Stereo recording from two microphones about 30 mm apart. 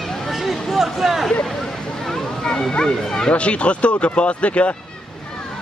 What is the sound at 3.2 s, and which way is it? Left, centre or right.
Speech, left.